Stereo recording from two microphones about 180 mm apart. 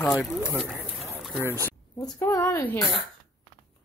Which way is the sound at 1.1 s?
Centre (ahead or behind).